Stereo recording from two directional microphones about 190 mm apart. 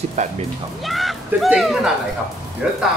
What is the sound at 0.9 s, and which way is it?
Speech, centre (ahead or behind).